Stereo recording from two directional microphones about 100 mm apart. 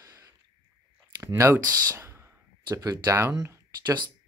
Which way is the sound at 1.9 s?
25° right (ahead or behind).